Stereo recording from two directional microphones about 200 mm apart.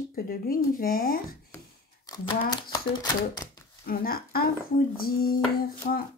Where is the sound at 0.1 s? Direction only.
45° left (ahead or behind).